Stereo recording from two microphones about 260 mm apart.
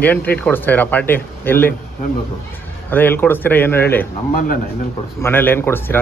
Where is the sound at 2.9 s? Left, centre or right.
Centre.